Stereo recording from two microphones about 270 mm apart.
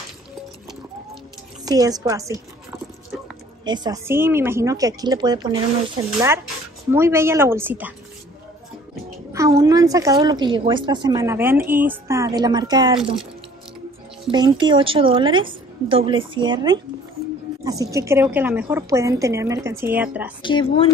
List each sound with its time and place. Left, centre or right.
1.6 s a woman's voice: centre
3.6 s a woman's voice: centre
6.9 s a woman's voice: centre
9.3 s a woman's voice: centre
14.3 s a woman's voice: centre
20.4 s speech: centre